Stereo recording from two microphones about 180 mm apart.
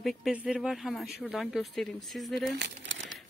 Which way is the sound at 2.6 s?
85° right.